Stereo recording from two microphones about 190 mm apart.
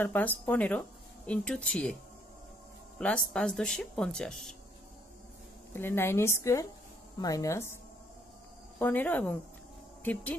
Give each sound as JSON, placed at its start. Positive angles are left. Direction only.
{"t": 0.0, "sound": "speech", "side_deg": 10}
{"t": 3.0, "sound": "speech", "side_deg": 5}
{"t": 5.7, "sound": "speech", "side_deg": 10}
{"t": 8.7, "sound": "speech", "side_deg": 10}